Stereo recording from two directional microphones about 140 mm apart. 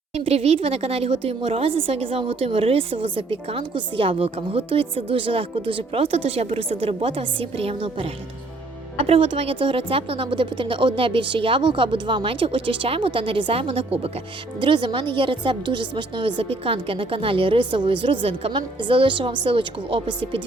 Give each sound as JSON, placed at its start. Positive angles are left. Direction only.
{"t": 0.1, "sound": "a woman's voice", "side_deg": -45}